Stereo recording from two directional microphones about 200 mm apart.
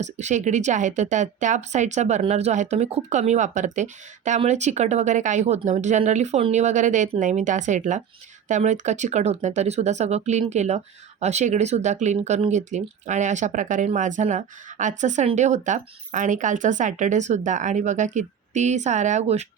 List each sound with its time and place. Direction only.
0.0 s speech: 35° right (ahead or behind)